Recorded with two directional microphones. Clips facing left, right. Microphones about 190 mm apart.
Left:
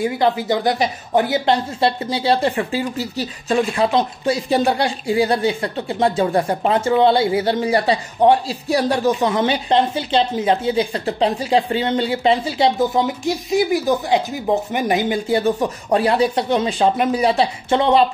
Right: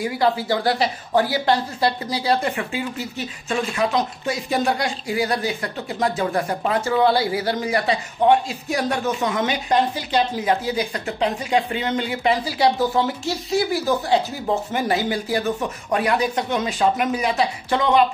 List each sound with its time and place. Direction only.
0.0 s speech: 20° left (ahead or behind)